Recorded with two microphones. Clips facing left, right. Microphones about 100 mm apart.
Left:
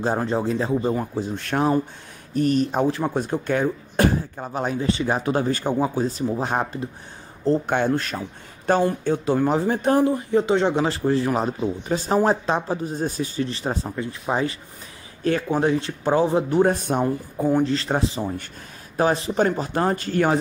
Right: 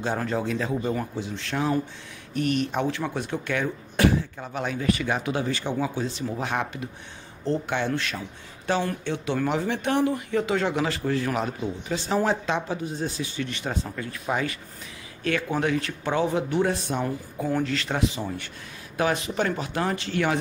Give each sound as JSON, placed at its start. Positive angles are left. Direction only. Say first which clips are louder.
{"t": 0.0, "sound": "speech", "louder": "left 4 dB", "side_deg": 35}
{"t": 1.3, "sound": "speech", "louder": "left 6 dB", "side_deg": 55}
{"t": 2.3, "sound": "speech", "louder": "left 5 dB", "side_deg": 35}
{"t": 11.9, "sound": "speech", "louder": "left 4 dB", "side_deg": 45}
{"t": 13.8, "sound": "speech", "louder": "left 3 dB", "side_deg": 25}
{"t": 17.0, "sound": "speech", "louder": "left 6 dB", "side_deg": 20}
{"t": 17.6, "sound": "speech", "louder": "left 3 dB", "side_deg": 35}